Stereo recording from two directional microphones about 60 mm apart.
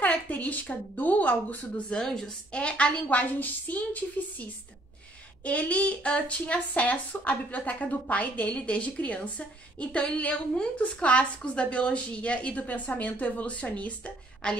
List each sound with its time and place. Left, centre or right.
0.0 s a woman's voice: left
2.0 s a woman's voice: centre